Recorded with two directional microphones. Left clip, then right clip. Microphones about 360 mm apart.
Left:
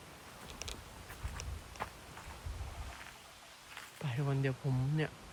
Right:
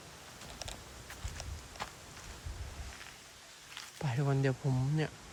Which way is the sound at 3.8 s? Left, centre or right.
Centre.